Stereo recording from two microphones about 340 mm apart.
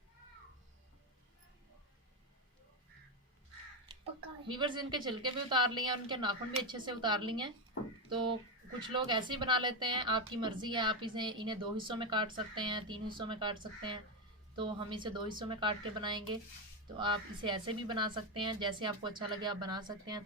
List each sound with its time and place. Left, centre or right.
4.4 s speech: centre
8.8 s speech: centre